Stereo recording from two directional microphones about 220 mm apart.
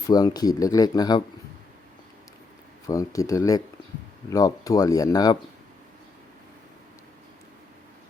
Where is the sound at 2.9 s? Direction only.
15° left (ahead or behind).